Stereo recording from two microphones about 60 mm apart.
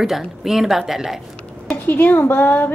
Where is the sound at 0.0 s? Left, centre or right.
Centre.